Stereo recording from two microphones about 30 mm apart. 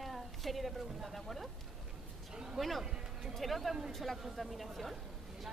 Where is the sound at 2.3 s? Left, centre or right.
Right.